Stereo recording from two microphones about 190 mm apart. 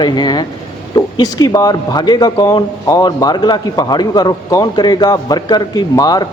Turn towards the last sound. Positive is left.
turn(degrees=20)  # may be behind; listen again after turning